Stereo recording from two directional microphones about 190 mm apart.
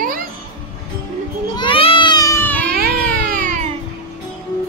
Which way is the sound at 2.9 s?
5° left (ahead or behind).